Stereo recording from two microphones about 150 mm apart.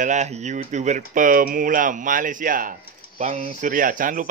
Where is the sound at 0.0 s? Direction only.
50° right (ahead or behind).